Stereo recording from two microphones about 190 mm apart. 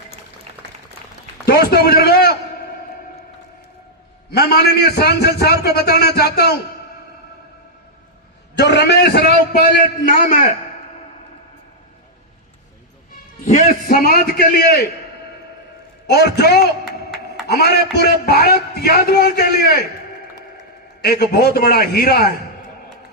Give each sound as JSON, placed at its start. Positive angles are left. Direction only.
{"t": 1.5, "sound": "a man's voice", "side_deg": 55}
{"t": 4.3, "sound": "a man's voice", "side_deg": 55}
{"t": 8.5, "sound": "a man's voice", "side_deg": 60}
{"t": 10.0, "sound": "a man's voice", "side_deg": 45}
{"t": 13.4, "sound": "a man's voice", "side_deg": 45}
{"t": 16.0, "sound": "a man's voice", "side_deg": 55}
{"t": 17.4, "sound": "a sound", "side_deg": 55}
{"t": 17.9, "sound": "a man's voice", "side_deg": 55}
{"t": 21.0, "sound": "a man's voice", "side_deg": 55}